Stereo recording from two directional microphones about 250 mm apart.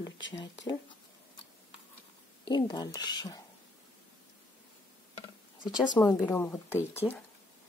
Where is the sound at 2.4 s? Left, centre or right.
Centre.